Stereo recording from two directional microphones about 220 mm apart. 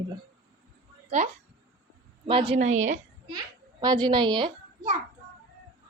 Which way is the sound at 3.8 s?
20° right (ahead or behind).